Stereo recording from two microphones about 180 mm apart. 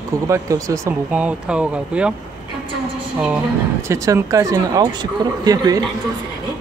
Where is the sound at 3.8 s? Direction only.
15° right (ahead or behind).